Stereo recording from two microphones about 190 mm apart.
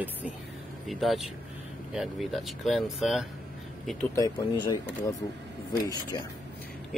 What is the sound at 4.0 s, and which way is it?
Speech, 20° left (ahead or behind).